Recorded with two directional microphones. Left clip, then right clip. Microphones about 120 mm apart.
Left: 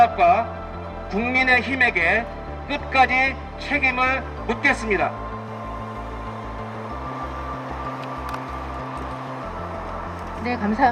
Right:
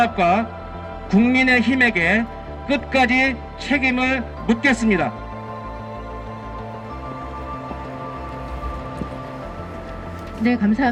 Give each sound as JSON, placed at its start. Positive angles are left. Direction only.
{"t": 0.0, "sound": "a man's voice", "side_deg": -20}
{"t": 10.4, "sound": "a man's voice", "side_deg": -20}